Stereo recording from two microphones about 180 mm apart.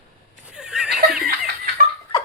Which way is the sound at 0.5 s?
5° right (ahead or behind).